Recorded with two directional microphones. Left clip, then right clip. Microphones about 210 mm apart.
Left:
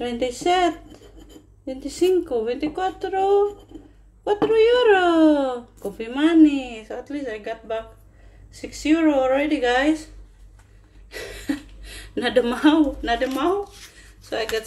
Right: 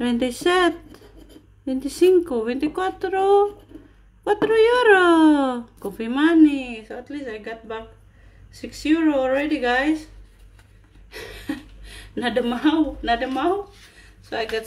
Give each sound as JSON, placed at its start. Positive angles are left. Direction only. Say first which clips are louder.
{"t": 0.0, "sound": "speech", "louder": "right 1 dB", "side_deg": -25}
{"t": 11.1, "sound": "speech", "louder": "left 3 dB", "side_deg": 5}